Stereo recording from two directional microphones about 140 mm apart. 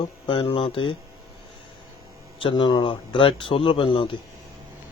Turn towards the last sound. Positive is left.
turn(degrees=40)  # may be behind; listen again after turning